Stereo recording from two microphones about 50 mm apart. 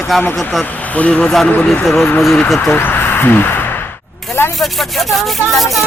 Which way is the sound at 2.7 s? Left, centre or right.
Left.